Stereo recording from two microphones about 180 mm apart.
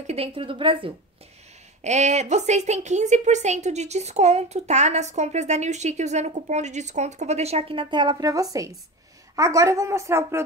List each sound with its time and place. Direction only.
0.0 s a woman's voice: 35° right (ahead or behind)
1.8 s a woman's voice: 40° right (ahead or behind); by 10.4 s 15° right (ahead or behind)